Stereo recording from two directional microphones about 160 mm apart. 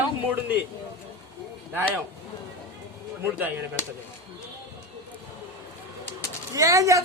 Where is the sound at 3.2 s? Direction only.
10° right (ahead or behind).